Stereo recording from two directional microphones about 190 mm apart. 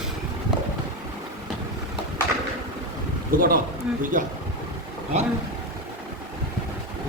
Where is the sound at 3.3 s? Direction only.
45° right (ahead or behind).